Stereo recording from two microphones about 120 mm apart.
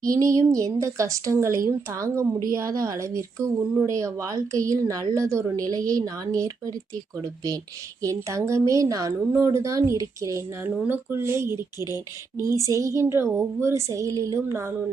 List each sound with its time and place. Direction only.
0.0 s speech: 30° right (ahead or behind)
8.0 s speech: 25° right (ahead or behind)